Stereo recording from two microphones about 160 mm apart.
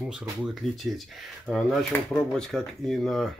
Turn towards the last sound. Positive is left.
turn(degrees=0)  # may be behind; listen again after turning